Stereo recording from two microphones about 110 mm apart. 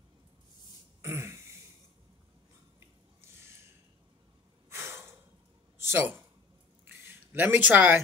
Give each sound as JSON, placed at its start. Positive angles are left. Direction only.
{"t": 1.0, "sound": "throat clearing", "side_deg": -25}
{"t": 4.6, "sound": "breathing", "side_deg": -25}
{"t": 5.9, "sound": "a man's voice", "side_deg": -20}
{"t": 6.8, "sound": "a sound", "side_deg": -20}